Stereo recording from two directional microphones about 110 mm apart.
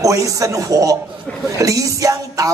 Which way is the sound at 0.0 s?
30° right (ahead or behind).